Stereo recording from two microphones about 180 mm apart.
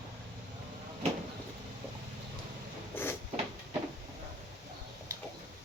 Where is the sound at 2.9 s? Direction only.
10° left (ahead or behind).